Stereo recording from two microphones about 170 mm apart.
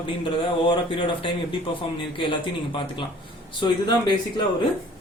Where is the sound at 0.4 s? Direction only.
30° left (ahead or behind).